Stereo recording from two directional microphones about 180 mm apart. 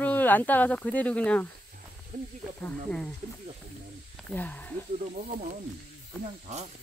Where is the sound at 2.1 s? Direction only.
45° right (ahead or behind).